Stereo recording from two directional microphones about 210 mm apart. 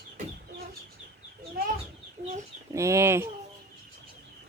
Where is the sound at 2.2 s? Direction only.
35° right (ahead or behind).